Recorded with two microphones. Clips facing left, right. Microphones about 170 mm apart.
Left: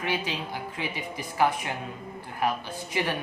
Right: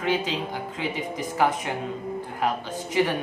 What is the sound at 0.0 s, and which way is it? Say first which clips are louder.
A woman's voice: right 5 dB; 20° right (ahead or behind).